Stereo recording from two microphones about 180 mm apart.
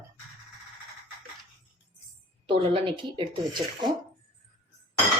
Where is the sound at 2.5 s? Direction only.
30° right (ahead or behind).